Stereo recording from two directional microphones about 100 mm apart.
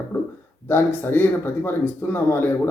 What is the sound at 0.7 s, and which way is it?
Speech, 20° left (ahead or behind).